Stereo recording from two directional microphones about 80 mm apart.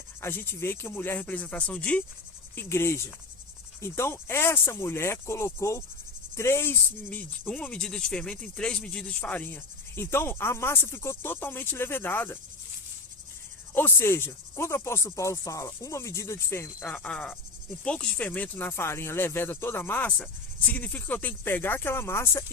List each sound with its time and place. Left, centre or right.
0.2 s speech: left
1.2 s speech: centre
2.6 s cricket: left
6.3 s speech: left
13.7 s speech: left
14.3 s cricket: left
16.9 s speech: centre; by 22.4 s left